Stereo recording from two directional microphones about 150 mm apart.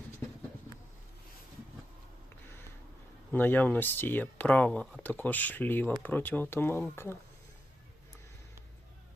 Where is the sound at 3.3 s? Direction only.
10° left (ahead or behind).